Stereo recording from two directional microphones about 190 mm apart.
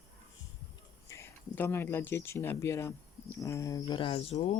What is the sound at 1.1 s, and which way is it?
Speech, 15° left (ahead or behind).